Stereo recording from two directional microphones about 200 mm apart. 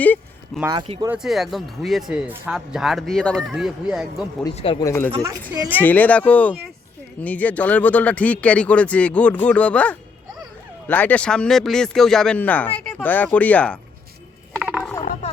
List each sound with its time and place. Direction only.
0.0 s a sound: 10° left (ahead or behind)
0.6 s speech: 20° right (ahead or behind)
1.1 s speech: centre (ahead or behind)
4.5 s speech: 30° left (ahead or behind)
4.8 s speech: 15° left (ahead or behind)
5.5 s speech: 10° right (ahead or behind)
5.8 s speech: 10° left (ahead or behind)
14.6 s a sound: 5° right (ahead or behind)